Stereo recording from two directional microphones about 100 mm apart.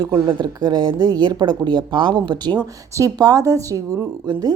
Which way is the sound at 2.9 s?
35° right (ahead or behind).